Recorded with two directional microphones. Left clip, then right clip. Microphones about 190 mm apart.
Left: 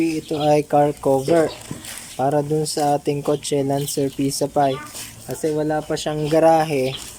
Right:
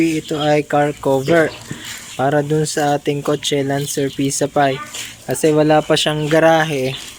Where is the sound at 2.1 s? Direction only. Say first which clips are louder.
Right 3 dB; 5° right (ahead or behind).